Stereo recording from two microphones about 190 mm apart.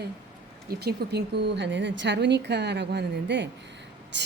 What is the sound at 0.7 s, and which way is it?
A woman's voice, 55° right (ahead or behind).